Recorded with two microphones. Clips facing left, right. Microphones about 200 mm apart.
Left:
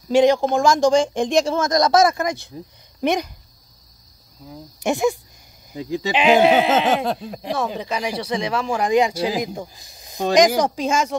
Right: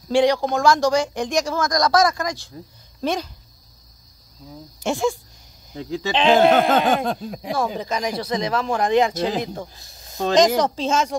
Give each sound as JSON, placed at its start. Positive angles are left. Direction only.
{"t": 0.1, "sound": "speech", "side_deg": 20}
{"t": 0.6, "sound": "speech", "side_deg": 25}
{"t": 4.7, "sound": "speech", "side_deg": 15}